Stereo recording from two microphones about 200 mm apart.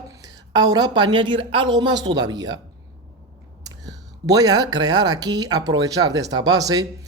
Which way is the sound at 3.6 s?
20° right (ahead or behind).